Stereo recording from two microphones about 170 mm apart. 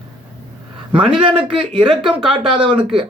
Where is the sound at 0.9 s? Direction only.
30° right (ahead or behind).